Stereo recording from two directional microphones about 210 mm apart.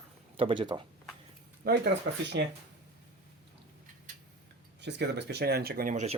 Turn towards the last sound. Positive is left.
turn(degrees=-35)  # may be behind; listen again after turning